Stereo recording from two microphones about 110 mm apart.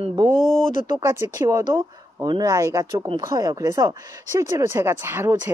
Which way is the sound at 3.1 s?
45° right (ahead or behind).